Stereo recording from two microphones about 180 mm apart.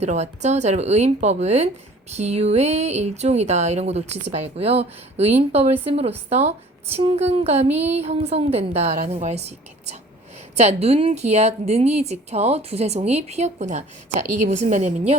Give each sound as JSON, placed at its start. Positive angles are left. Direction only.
{"t": 0.0, "sound": "speech", "side_deg": -40}